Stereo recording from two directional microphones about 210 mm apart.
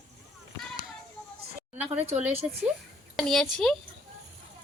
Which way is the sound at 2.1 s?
30° right (ahead or behind).